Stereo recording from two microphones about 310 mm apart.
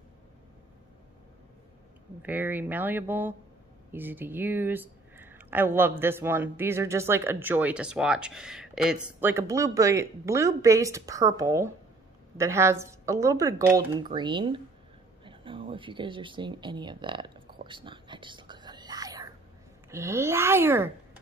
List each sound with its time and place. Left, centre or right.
2.2 s speech: centre
17.6 s whispering: centre
19.9 s speech: centre